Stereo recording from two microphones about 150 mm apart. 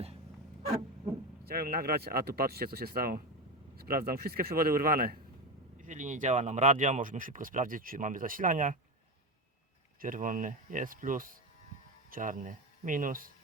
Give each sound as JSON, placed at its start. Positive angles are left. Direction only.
{"t": 1.5, "sound": "speech", "side_deg": -85}
{"t": 5.7, "sound": "speech", "side_deg": -55}
{"t": 10.0, "sound": "speech", "side_deg": -65}